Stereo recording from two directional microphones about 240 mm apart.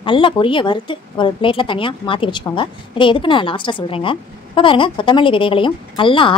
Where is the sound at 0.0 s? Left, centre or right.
Left.